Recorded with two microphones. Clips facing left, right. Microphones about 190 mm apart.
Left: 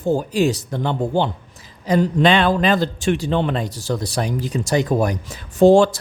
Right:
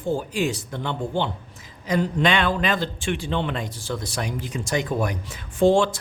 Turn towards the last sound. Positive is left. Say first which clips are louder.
# left 6 dB
turn(degrees=40)  # may be behind; listen again after turning